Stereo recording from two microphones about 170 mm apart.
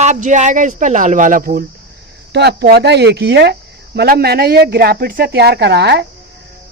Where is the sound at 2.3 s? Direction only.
80° right.